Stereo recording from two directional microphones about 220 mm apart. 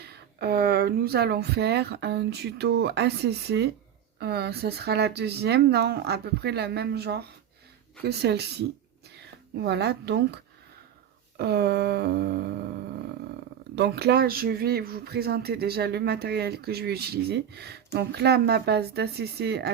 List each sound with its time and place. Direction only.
0.0 s speech: 45° right (ahead or behind)
13.7 s speech: 50° right (ahead or behind)